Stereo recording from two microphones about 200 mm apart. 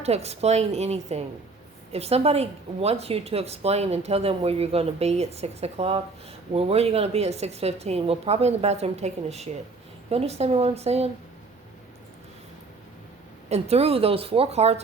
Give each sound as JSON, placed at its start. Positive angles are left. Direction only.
{"t": 0.0, "sound": "speech", "side_deg": -30}
{"t": 13.5, "sound": "a woman's voice", "side_deg": -30}